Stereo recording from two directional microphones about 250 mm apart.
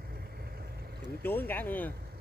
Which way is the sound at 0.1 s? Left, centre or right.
Right.